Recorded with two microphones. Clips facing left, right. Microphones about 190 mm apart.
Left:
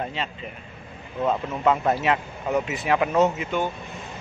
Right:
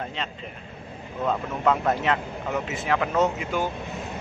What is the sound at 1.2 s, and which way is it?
Speech, 5° left (ahead or behind).